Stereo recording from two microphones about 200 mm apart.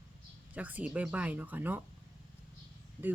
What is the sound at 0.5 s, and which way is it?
Speech, 5° right (ahead or behind).